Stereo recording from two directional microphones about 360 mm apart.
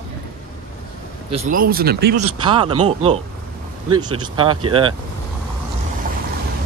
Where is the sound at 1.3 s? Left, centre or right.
Centre.